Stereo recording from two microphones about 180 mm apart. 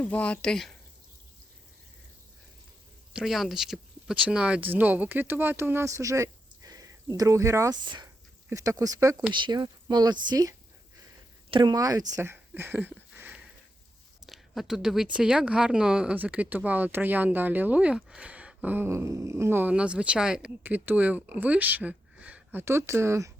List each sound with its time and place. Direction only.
0.0 s speech: 5° left (ahead or behind)
3.1 s speech: centre (ahead or behind); by 10.5 s 20° right (ahead or behind)
11.5 s speech: 20° right (ahead or behind)
12.1 s a sound: 15° right (ahead or behind)
14.3 s a woman's voice: centre (ahead or behind)